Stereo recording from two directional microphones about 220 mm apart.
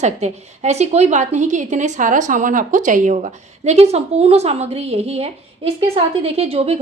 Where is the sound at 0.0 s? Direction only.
30° right (ahead or behind).